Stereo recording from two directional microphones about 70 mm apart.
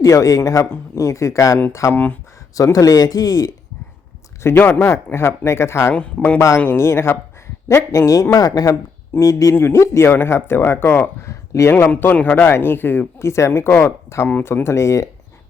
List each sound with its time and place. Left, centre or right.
0.0 s speech: left
1.9 s speech: left
2.7 s speech: left
4.4 s speech: left
5.9 s speech: centre
6.7 s speech: left
9.1 s speech: left
11.7 s speech: left